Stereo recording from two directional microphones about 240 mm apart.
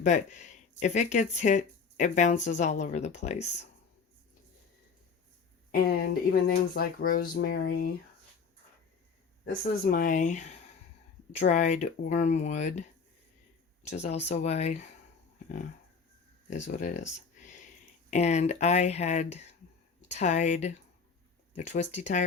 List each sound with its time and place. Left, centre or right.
0.0 s speech: left
5.7 s speech: left
9.5 s speech: left
13.9 s speech: left
16.5 s speech: left
18.1 s speech: left